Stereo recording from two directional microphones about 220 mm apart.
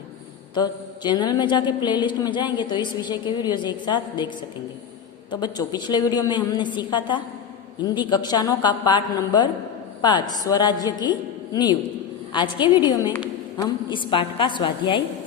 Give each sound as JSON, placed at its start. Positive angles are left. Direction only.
{"t": 0.5, "sound": "a woman's voice", "side_deg": 20}
{"t": 5.3, "sound": "a woman's voice", "side_deg": 20}